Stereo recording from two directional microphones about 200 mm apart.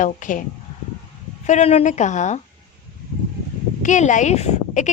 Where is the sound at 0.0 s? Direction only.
40° left (ahead or behind).